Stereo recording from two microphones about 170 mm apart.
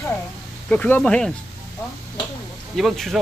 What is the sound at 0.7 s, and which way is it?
Speech, 10° left (ahead or behind).